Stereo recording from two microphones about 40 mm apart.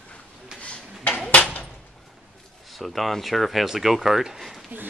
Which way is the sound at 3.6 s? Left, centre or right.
Centre.